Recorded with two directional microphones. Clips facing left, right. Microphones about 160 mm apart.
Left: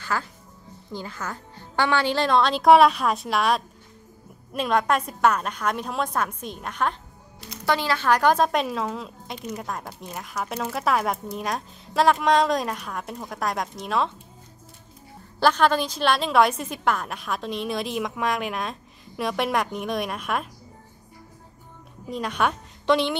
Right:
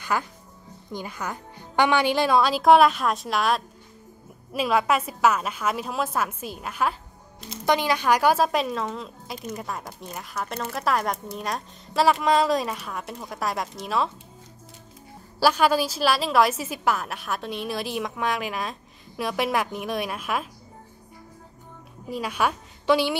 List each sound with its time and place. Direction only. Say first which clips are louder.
0.0 s a woman's voice: right 2 dB; 15° right (ahead or behind)
7.3 s a woman's voice: right 2 dB; 20° right (ahead or behind); by 14.1 s centre (ahead or behind)
15.4 s a woman's voice: even; 5° right (ahead or behind)
22.1 s a woman's voice: left 1 dB; 5° right (ahead or behind)